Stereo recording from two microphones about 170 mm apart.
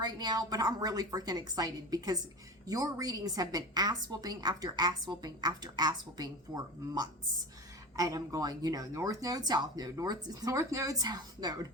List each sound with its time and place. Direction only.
0.0 s a woman's voice: 25° right (ahead or behind)